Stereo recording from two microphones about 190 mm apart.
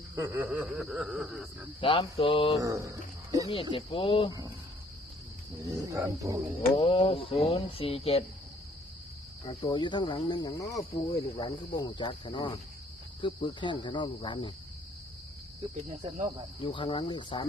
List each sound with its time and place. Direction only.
0.2 s snicker: 10° right (ahead or behind)
1.8 s cricket: 30° left (ahead or behind)
2.6 s speech: 15° right (ahead or behind)
3.5 s cricket: 25° left (ahead or behind)
5.7 s speech: 15° right (ahead or behind)
6.7 s cricket: 30° left (ahead or behind)
9.5 s cricket: 25° left (ahead or behind)
11.1 s cricket: 30° left (ahead or behind)
16.6 s cricket: 30° left (ahead or behind)